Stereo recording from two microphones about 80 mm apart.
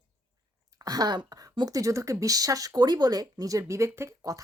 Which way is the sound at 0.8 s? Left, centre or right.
Right.